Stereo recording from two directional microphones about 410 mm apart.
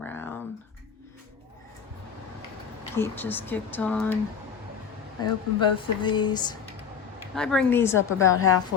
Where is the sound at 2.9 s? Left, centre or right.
Centre.